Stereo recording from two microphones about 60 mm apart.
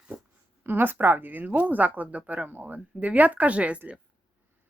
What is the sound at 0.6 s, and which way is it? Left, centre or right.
A woman's voice, right.